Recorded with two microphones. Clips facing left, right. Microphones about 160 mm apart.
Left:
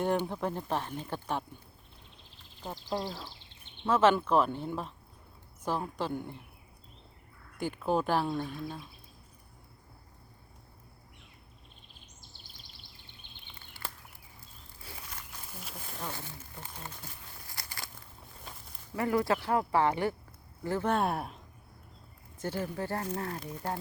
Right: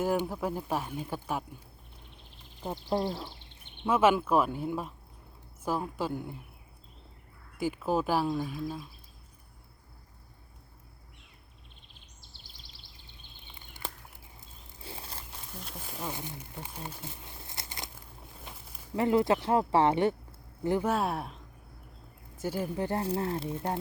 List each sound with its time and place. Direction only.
0.0 s speech: 5° right (ahead or behind)
3.8 s speech: 10° right (ahead or behind)
7.6 s speech: 5° right (ahead or behind)
13.5 s a sound: 15° right (ahead or behind)
14.8 s a sound: 30° right (ahead or behind)
15.5 s a sound: centre (ahead or behind); by 17.9 s 20° right (ahead or behind)
18.9 s speech: 20° right (ahead or behind)
20.9 s speech: centre (ahead or behind)
22.4 s speech: 10° right (ahead or behind)
23.0 s speech: 30° right (ahead or behind)